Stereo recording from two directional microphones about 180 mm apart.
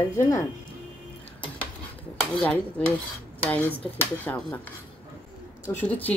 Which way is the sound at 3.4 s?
10° left (ahead or behind).